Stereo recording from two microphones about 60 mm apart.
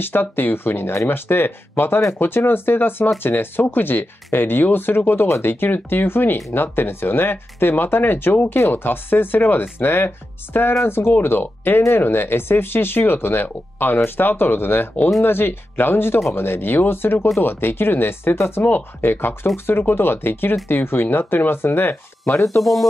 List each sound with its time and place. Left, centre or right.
0.0 s speech: left
22.6 s speech: centre